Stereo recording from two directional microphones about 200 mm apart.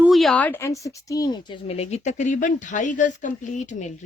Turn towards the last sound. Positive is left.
turn(degrees=35)  # may be behind; listen again after turning